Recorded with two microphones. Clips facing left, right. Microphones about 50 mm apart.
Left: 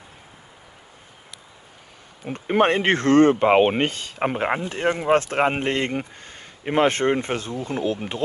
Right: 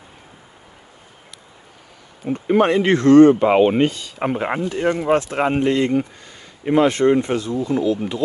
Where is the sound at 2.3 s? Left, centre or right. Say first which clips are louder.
Right 3 dB; left.